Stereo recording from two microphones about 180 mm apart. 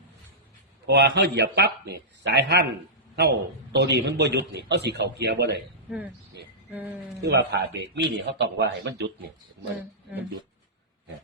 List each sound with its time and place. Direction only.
0.9 s a man's voice: 70° right (ahead or behind)
6.7 s speech: 10° right (ahead or behind)
7.2 s a man's voice: 70° right (ahead or behind)